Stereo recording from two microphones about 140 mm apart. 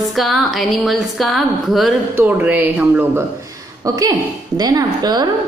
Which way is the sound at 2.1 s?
10° right (ahead or behind).